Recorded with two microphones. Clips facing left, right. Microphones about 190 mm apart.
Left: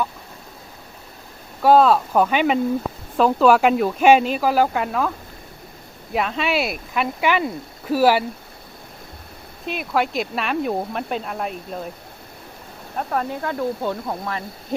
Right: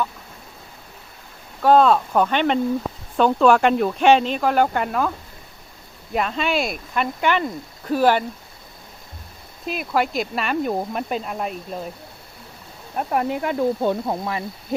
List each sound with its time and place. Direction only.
1.6 s speech: 5° left (ahead or behind)
6.1 s speech: centre (ahead or behind)
9.6 s speech: centre (ahead or behind)
13.0 s speech: 15° right (ahead or behind)